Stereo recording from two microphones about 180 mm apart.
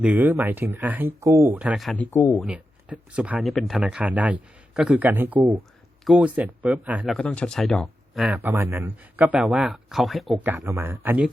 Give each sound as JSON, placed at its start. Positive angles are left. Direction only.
{"t": 0.0, "sound": "speech", "side_deg": -10}
{"t": 2.1, "sound": "speech", "side_deg": 15}
{"t": 2.4, "sound": "speech", "side_deg": -5}
{"t": 7.2, "sound": "speech", "side_deg": 5}
{"t": 8.4, "sound": "speech", "side_deg": -10}
{"t": 10.4, "sound": "speech", "side_deg": -15}